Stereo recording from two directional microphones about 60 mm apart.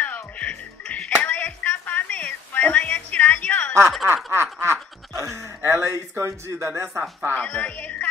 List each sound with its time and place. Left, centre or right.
0.0 s music: left
4.0 s snicker: right
5.1 s speech: right
6.9 s speech: centre
7.3 s speech: left